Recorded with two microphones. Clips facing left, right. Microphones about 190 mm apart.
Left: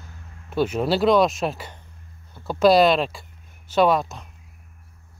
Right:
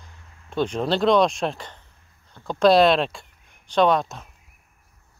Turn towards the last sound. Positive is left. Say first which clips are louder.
# even
turn(degrees=0)  # may be behind; listen again after turning